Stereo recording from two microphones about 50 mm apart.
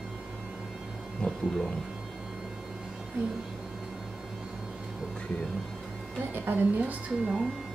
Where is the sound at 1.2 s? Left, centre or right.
Left.